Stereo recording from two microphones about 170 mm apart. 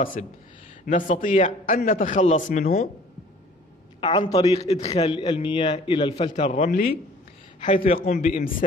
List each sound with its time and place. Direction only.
0.0 s a man's voice: 50° left (ahead or behind)
4.0 s a man's voice: 30° left (ahead or behind)
4.6 s a man's voice: 35° left (ahead or behind)
6.3 s a man's voice: 45° left (ahead or behind)
7.8 s a man's voice: 35° left (ahead or behind)
8.1 s a man's voice: 50° left (ahead or behind)